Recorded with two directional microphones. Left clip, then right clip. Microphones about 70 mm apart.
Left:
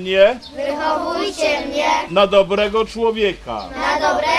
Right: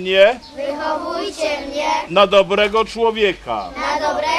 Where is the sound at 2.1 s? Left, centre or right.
Centre.